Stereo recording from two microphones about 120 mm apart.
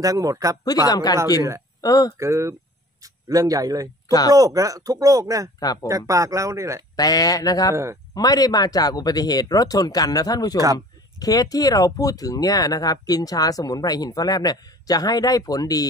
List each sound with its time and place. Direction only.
0.0 s speech: 30° right (ahead or behind)
0.8 s speech: 35° left (ahead or behind)
2.1 s speech: 25° right (ahead or behind)
5.6 s speech: 30° left (ahead or behind)
5.9 s speech: 25° right (ahead or behind)
7.0 s speech: 30° left (ahead or behind)
7.7 s speech: 20° right (ahead or behind)
8.1 s speech: 30° left (ahead or behind)